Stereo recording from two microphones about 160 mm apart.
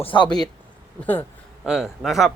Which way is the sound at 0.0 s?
30° left (ahead or behind).